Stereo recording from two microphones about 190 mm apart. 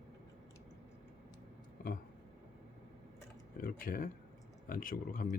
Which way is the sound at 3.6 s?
50° left (ahead or behind).